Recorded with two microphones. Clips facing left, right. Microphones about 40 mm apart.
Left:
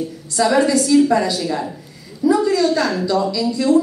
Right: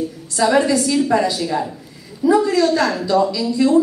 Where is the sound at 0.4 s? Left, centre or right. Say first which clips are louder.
Even; centre.